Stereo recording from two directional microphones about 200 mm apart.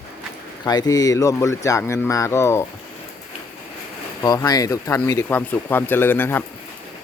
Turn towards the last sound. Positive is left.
turn(degrees=10)  # may be behind; listen again after turning